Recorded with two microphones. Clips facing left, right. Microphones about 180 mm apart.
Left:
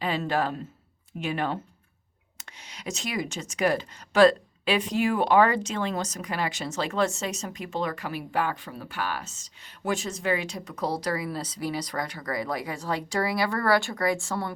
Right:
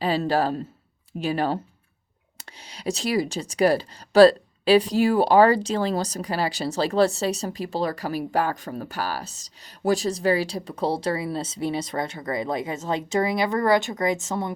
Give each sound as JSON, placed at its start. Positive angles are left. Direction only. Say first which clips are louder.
{"t": 0.0, "sound": "a man's voice", "louder": "right 5 dB", "side_deg": -35}